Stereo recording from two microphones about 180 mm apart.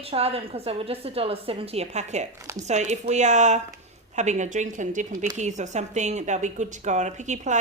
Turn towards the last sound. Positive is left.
turn(degrees=-40)  # may be behind; listen again after turning